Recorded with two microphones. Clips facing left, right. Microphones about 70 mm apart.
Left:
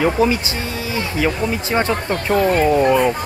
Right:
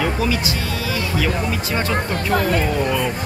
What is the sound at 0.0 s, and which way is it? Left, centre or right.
Speech, left.